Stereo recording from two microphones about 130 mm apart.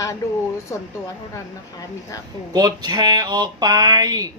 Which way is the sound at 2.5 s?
30° right (ahead or behind).